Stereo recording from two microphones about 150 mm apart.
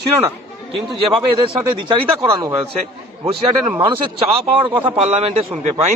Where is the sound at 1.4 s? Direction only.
35° right (ahead or behind).